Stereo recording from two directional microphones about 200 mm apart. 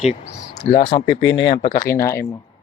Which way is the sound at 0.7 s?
30° left (ahead or behind).